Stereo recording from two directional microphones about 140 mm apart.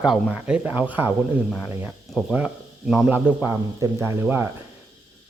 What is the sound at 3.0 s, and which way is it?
Speech, 15° right (ahead or behind).